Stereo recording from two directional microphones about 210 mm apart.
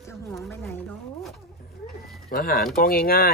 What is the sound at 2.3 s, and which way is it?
Speech, 45° left (ahead or behind).